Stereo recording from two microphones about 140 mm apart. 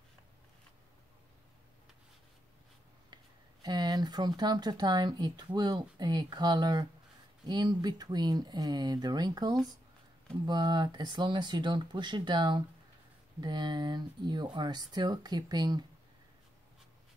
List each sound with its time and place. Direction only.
3.6 s speech: 30° right (ahead or behind)